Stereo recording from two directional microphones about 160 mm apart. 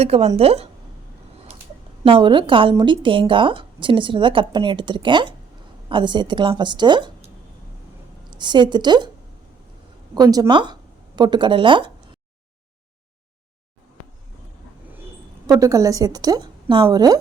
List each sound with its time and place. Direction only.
0.0 s a woman's voice: 40° right (ahead or behind)
2.0 s a woman's voice: 30° right (ahead or behind)
8.3 s speech: 30° right (ahead or behind)
10.2 s speech: 20° right (ahead or behind)
15.4 s a woman's voice: 20° right (ahead or behind)